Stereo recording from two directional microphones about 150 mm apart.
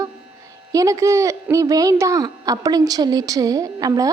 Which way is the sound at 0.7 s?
20° right (ahead or behind).